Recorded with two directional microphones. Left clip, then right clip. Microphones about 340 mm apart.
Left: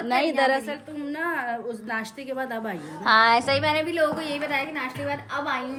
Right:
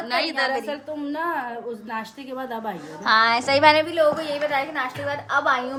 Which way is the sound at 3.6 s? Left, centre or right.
Right.